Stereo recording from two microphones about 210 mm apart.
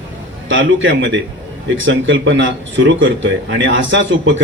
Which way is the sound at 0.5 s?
65° right (ahead or behind).